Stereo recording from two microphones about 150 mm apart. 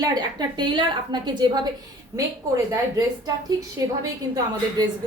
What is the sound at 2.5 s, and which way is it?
Speech, 20° right (ahead or behind).